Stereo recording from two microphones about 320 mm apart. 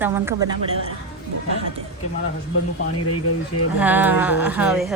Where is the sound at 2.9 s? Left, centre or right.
Left.